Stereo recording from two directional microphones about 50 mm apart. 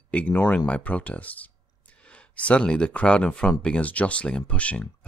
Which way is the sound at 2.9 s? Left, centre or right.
Left.